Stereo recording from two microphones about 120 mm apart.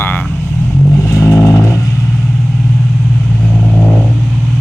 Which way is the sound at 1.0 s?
25° left (ahead or behind).